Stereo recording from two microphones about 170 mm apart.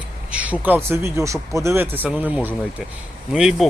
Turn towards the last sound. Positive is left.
turn(degrees=0)  # may be behind; listen again after turning